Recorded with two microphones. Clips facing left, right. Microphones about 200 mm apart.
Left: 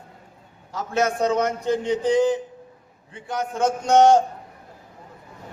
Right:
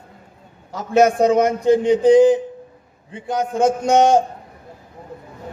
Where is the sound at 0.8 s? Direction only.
15° right (ahead or behind).